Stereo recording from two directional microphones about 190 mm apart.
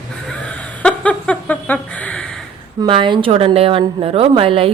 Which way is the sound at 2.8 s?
25° right (ahead or behind).